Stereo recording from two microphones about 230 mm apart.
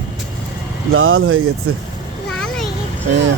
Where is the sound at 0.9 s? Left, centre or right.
Right.